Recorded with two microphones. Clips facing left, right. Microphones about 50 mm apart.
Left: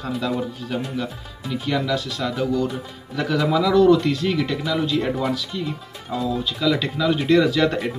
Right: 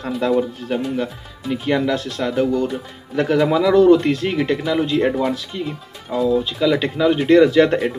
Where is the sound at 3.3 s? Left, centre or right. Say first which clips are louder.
Right 3 dB; right.